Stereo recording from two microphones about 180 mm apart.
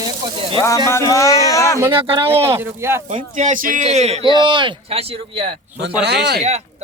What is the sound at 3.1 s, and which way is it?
A man's voice, 45° right (ahead or behind).